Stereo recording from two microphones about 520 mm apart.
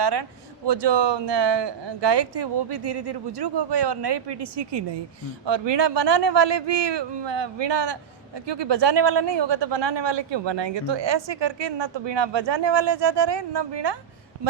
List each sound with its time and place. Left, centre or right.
0.0 s a man's voice: right